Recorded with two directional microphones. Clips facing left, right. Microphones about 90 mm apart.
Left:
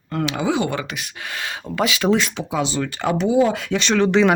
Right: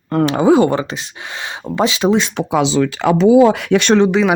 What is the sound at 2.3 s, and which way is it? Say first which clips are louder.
Speech: right 8 dB; 75° right (ahead or behind).